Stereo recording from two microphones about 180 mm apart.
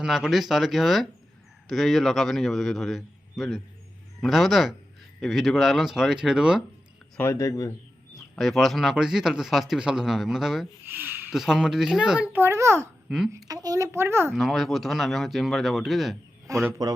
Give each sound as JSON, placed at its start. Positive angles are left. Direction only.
{"t": 0.0, "sound": "speech", "side_deg": 0}
{"t": 7.2, "sound": "speech", "side_deg": 15}
{"t": 8.4, "sound": "a child's voice", "side_deg": 0}
{"t": 13.1, "sound": "a woman's voice", "side_deg": 0}
{"t": 13.3, "sound": "a child's voice", "side_deg": -20}
{"t": 14.3, "sound": "speech", "side_deg": 0}
{"t": 16.5, "sound": "a child's voice", "side_deg": -15}